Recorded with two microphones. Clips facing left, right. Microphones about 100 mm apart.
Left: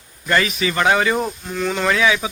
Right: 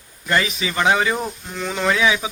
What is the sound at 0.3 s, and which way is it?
Speech, 15° right (ahead or behind).